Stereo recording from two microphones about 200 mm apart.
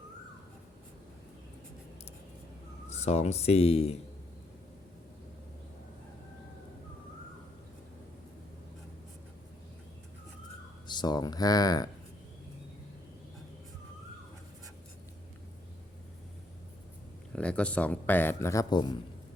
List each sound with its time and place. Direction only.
2.9 s speech: 35° left (ahead or behind)
10.8 s speech: 20° left (ahead or behind)
17.3 s speech: 5° left (ahead or behind); by 18.9 s 20° left (ahead or behind)